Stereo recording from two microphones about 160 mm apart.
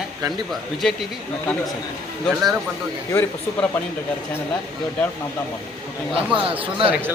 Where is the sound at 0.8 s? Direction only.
5° left (ahead or behind).